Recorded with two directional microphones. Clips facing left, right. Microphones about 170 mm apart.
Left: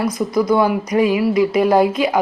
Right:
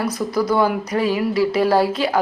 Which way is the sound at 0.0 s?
10° left (ahead or behind).